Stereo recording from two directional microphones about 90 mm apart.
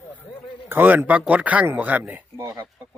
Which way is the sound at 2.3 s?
35° right (ahead or behind).